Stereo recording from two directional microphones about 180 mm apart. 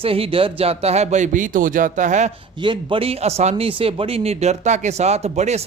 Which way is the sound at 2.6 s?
25° right (ahead or behind).